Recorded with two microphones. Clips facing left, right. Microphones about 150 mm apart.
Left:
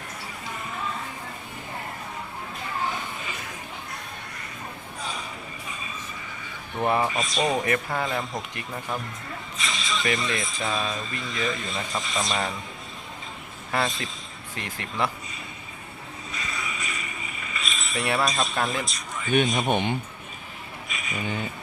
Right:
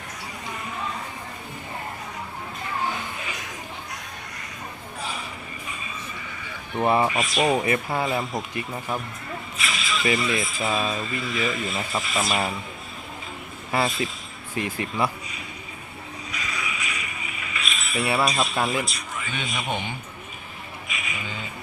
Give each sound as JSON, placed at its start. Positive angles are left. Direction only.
{"t": 6.7, "sound": "speech", "side_deg": -15}
{"t": 7.1, "sound": "speech", "side_deg": 0}
{"t": 13.7, "sound": "speech", "side_deg": -5}
{"t": 16.5, "sound": "a sound", "side_deg": 0}
{"t": 19.5, "sound": "a man's voice", "side_deg": 55}
{"t": 20.8, "sound": "a sound", "side_deg": 0}